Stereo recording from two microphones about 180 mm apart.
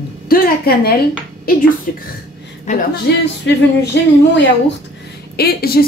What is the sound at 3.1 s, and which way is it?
Speech, 70° left (ahead or behind).